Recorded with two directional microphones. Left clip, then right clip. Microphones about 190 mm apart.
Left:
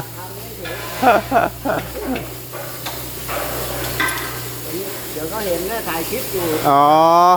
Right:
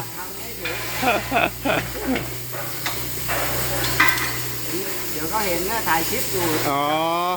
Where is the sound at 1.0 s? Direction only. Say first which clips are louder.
Left 6 dB; 15° left (ahead or behind).